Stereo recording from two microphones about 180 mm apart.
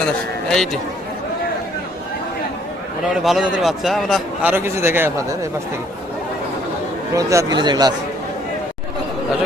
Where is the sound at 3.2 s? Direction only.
Centre (ahead or behind).